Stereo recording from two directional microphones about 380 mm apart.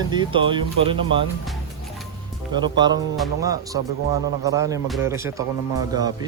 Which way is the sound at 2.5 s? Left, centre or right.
Centre.